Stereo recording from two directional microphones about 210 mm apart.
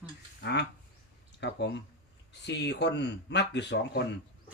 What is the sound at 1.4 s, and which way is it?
Speech, 55° left (ahead or behind).